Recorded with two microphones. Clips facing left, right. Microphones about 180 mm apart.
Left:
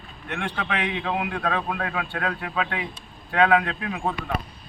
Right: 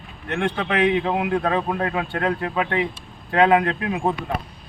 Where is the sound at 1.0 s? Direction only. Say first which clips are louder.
Right 5 dB; 25° right (ahead or behind).